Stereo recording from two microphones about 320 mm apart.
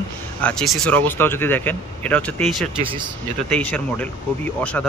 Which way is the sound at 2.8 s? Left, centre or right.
Centre.